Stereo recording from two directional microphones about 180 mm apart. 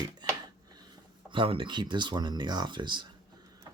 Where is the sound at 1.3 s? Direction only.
30° right (ahead or behind).